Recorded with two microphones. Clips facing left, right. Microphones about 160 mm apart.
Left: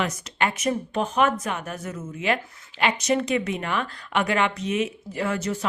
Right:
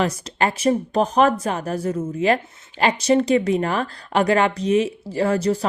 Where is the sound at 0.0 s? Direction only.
35° right (ahead or behind).